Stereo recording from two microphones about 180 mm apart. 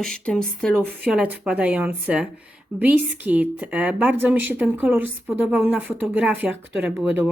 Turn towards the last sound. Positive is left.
turn(degrees=-10)  # may be behind; listen again after turning